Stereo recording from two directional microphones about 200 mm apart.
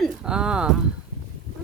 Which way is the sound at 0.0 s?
5° right (ahead or behind).